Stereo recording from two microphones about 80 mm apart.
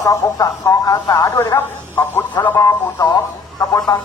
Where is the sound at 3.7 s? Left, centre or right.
Left.